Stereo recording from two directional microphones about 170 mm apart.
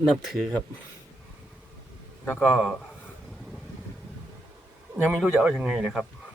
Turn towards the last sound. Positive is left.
turn(degrees=-5)  # may be behind; listen again after turning